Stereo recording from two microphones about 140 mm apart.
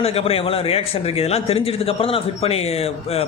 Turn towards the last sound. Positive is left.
turn(degrees=45)  # may be behind; listen again after turning